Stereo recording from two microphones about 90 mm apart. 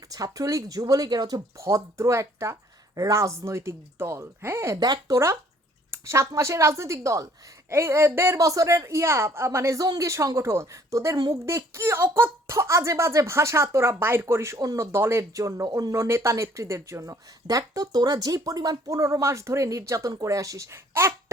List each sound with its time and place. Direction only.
0.1 s speech: 40° right (ahead or behind)
1.6 s speech: 35° right (ahead or behind)
4.8 s speech: 45° right (ahead or behind)